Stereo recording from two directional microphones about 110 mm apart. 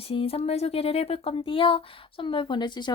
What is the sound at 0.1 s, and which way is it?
Speech, 60° left (ahead or behind).